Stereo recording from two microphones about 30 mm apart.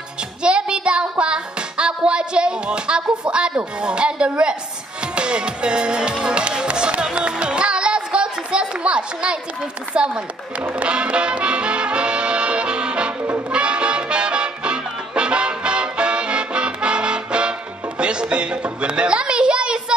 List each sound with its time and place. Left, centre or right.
0.4 s music: right
7.2 s a sound: right
9.9 s music: right
10.6 s music: right
10.9 s music: right